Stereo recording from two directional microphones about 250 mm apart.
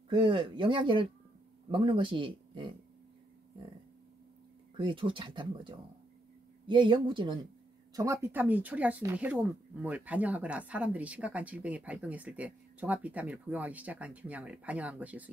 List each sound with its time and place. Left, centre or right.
0.1 s speech: centre
4.7 s speech: centre